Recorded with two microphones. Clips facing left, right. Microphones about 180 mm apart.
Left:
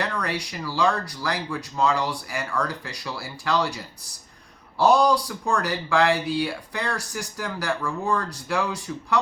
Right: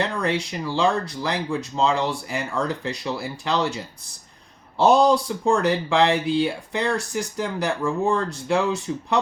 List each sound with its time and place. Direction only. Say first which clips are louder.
0.0 s speech: right 4 dB; 25° right (ahead or behind)